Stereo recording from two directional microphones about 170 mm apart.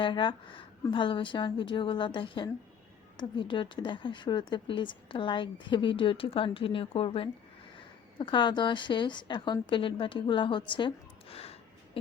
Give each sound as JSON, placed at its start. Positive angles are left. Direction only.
{"t": 0.0, "sound": "a woman's voice", "side_deg": 30}